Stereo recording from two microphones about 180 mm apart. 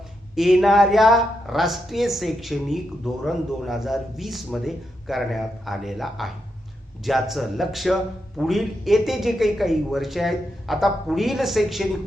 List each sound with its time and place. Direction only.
0.3 s speech: centre (ahead or behind)